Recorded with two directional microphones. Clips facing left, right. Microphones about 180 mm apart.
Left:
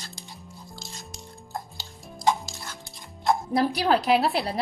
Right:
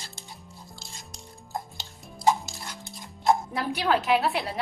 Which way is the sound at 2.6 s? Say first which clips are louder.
Right 1 dB; 20° right (ahead or behind).